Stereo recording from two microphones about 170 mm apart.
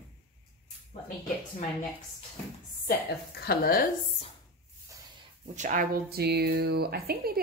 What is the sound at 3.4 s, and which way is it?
Speech, 65° left (ahead or behind).